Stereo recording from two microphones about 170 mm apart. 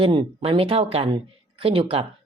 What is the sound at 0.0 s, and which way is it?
Speech, 30° right (ahead or behind).